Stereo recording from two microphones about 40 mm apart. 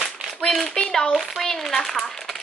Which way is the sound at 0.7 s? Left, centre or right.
Centre.